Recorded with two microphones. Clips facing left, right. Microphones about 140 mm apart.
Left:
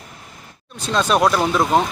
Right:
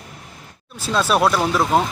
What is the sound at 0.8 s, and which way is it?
A man's voice, 5° right (ahead or behind).